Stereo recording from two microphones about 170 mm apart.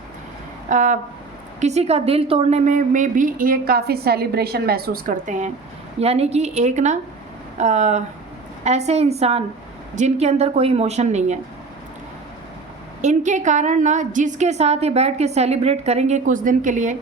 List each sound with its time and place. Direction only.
0.7 s a woman's voice: 50° right (ahead or behind)
13.0 s a woman's voice: 45° right (ahead or behind)